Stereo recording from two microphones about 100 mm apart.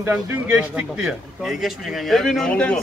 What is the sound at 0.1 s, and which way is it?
Speech, 15° right (ahead or behind).